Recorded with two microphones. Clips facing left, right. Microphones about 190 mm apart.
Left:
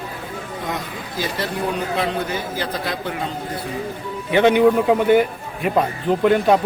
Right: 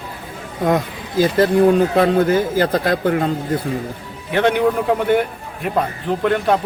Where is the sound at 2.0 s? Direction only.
45° right (ahead or behind).